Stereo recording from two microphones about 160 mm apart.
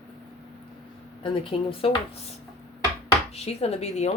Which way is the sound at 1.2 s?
35° left (ahead or behind).